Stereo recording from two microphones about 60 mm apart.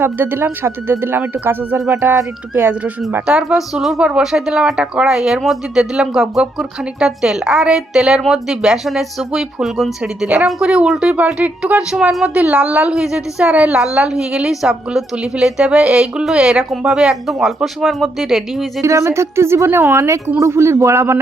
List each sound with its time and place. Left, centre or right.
0.0 s speech: right
3.2 s a woman's voice: centre
3.8 s a woman's voice: centre
10.0 s a woman's voice: centre
18.8 s speech: right